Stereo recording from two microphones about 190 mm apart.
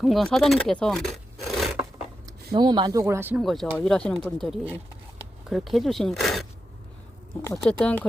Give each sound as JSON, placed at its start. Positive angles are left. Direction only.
{"t": 0.0, "sound": "speech", "side_deg": 0}
{"t": 2.5, "sound": "speech", "side_deg": -25}
{"t": 3.4, "sound": "speech", "side_deg": 0}
{"t": 7.5, "sound": "speech", "side_deg": 5}